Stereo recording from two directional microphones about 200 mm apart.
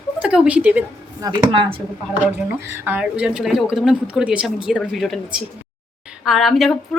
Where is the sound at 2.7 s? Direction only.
10° right (ahead or behind).